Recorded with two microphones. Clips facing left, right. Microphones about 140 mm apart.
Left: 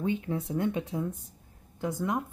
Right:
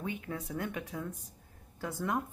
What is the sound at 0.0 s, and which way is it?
A woman's voice, 25° left (ahead or behind).